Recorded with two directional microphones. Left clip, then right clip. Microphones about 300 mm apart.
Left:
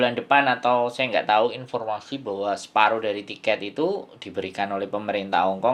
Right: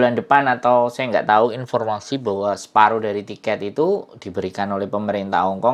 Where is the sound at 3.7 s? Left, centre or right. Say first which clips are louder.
Right 6 dB; right.